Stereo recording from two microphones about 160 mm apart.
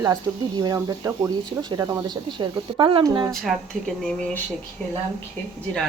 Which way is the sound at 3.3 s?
Centre (ahead or behind).